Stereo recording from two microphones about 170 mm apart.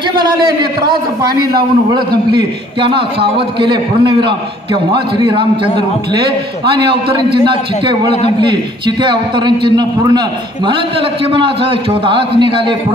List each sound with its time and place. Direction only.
0.1 s a man's voice: 25° right (ahead or behind)
7.4 s a man's voice: 30° right (ahead or behind)